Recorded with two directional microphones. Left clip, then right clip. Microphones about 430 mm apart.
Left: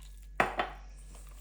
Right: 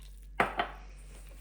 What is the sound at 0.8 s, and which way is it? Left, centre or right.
Dishes, centre.